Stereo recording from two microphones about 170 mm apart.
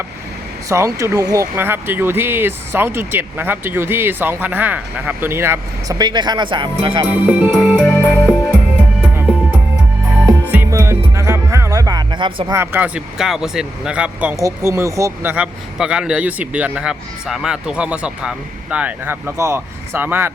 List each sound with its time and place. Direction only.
0.7 s speech: 20° right (ahead or behind)
7.3 s music: 5° right (ahead or behind)
10.4 s music: 10° right (ahead or behind); by 12.5 s 25° right (ahead or behind)
12.5 s speech: 10° right (ahead or behind)